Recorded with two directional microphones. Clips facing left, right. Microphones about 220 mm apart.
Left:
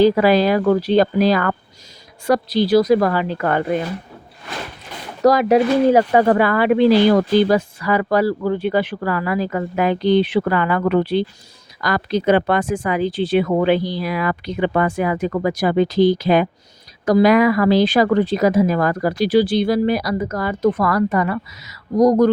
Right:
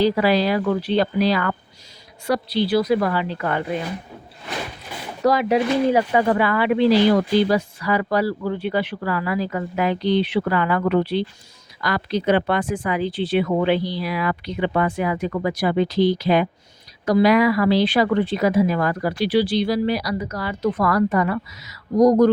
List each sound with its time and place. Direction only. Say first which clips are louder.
0.0 s speech: left 4 dB; 50° left (ahead or behind)
5.2 s speech: left 5 dB; 45° left (ahead or behind)